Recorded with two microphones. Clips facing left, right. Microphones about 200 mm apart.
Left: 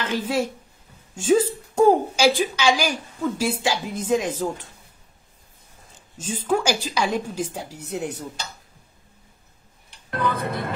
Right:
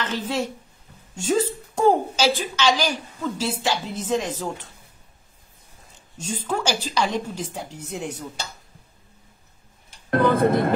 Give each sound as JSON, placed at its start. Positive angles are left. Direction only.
{"t": 0.0, "sound": "a woman's voice", "side_deg": 10}
{"t": 6.1, "sound": "a woman's voice", "side_deg": 10}
{"t": 7.8, "sound": "speech", "side_deg": 65}
{"t": 10.1, "sound": "speech", "side_deg": -50}